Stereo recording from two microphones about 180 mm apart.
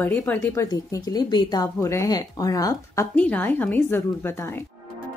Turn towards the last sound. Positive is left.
turn(degrees=10)  # may be behind; listen again after turning